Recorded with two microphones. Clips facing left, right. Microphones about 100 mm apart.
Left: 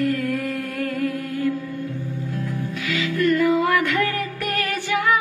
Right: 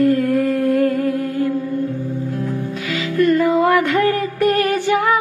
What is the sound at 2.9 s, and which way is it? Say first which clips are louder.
Music: right 4 dB; 25° right (ahead or behind).